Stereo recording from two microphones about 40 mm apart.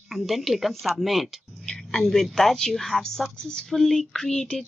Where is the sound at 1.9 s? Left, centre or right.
Centre.